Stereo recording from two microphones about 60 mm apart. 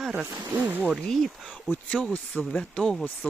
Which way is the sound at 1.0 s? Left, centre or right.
Centre.